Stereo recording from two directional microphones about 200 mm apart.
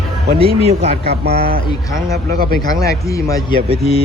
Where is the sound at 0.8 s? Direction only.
50° right (ahead or behind).